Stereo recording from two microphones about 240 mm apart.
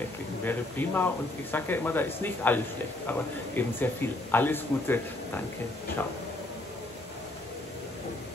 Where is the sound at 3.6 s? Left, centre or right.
Centre.